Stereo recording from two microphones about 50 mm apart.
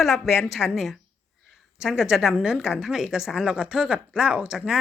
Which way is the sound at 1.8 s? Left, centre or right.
Centre.